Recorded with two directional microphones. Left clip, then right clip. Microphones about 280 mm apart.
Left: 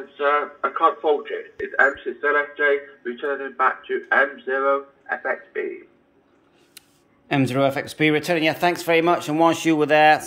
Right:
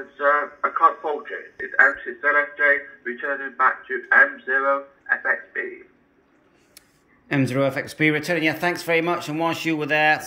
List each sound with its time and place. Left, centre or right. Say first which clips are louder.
0.2 s speech: right 1 dB; left
4.6 s speech: left 1 dB; left
7.2 s speech: left 2 dB; centre